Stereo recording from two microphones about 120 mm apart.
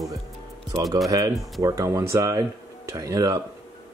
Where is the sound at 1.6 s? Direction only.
25° right (ahead or behind).